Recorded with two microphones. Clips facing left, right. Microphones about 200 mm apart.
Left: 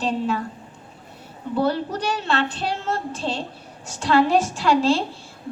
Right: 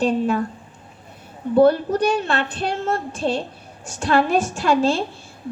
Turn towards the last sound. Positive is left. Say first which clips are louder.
# even
turn(degrees=-55)  # may be behind; listen again after turning